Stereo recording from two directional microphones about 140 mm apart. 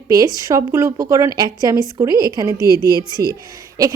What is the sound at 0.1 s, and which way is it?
A woman's voice, 25° right (ahead or behind).